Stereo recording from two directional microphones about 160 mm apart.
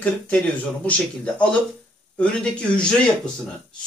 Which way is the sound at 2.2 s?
5° left (ahead or behind).